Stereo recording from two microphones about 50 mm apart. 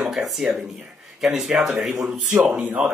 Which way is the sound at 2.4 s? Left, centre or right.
Right.